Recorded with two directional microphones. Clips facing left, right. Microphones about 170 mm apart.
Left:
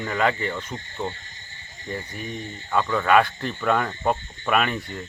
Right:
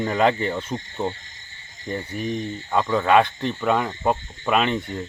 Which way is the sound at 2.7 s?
15° right (ahead or behind).